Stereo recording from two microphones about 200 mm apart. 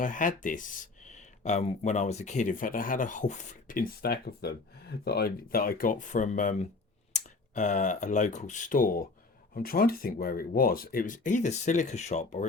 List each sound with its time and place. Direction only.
0.0 s speech: 40° left (ahead or behind)